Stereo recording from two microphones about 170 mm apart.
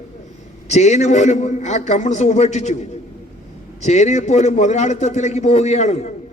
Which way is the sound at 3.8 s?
45° left (ahead or behind).